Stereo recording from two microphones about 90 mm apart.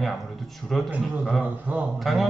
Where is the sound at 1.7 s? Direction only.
15° right (ahead or behind).